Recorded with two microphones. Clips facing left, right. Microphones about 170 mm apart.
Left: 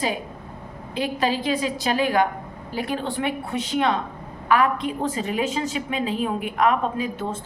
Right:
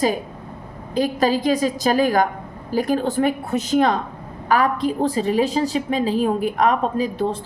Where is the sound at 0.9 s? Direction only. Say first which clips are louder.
Right 5 dB; 40° right (ahead or behind).